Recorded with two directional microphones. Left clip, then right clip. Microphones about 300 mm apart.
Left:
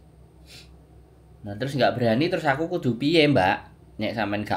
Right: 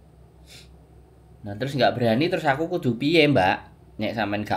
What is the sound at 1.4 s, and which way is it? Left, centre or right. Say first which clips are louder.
Speech: right 1 dB; centre.